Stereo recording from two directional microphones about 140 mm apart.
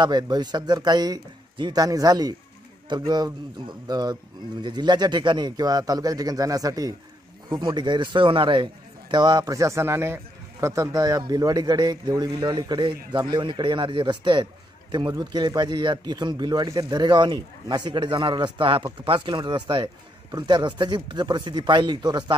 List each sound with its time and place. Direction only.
0.0 s a man's voice: 30° right (ahead or behind)